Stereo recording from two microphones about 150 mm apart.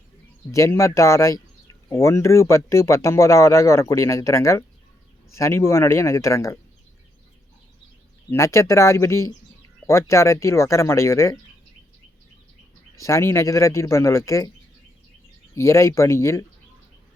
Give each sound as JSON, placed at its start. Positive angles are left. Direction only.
{"t": 0.5, "sound": "speech", "side_deg": 20}
{"t": 8.3, "sound": "speech", "side_deg": 20}
{"t": 13.0, "sound": "speech", "side_deg": 20}
{"t": 15.5, "sound": "speech", "side_deg": 20}